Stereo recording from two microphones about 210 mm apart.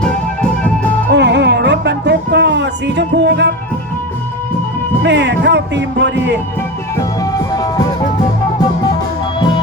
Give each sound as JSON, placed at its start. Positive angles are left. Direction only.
{"t": 0.0, "sound": "music", "side_deg": 5}
{"t": 1.1, "sound": "music", "side_deg": -55}
{"t": 5.0, "sound": "speech", "side_deg": -55}
{"t": 6.9, "sound": "music", "side_deg": 15}